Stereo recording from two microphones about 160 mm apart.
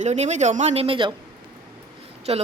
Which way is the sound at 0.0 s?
45° right (ahead or behind).